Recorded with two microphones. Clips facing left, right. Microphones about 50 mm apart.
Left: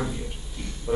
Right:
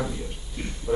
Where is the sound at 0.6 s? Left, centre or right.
Right.